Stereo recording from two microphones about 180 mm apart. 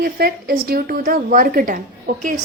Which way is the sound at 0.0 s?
55° right (ahead or behind).